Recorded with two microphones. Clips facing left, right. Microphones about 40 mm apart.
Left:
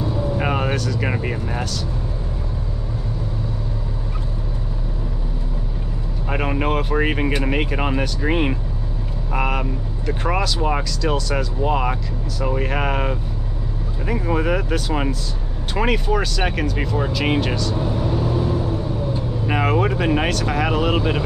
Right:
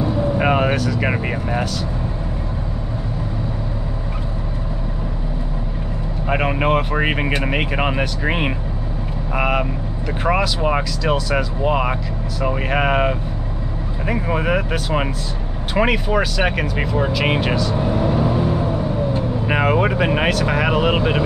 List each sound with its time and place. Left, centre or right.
0.0 s vehicle: centre
6.2 s speech: centre
17.7 s vehicle: right
19.6 s speech: centre